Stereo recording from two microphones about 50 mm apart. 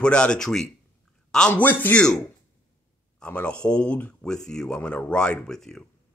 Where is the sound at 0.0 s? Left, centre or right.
Centre.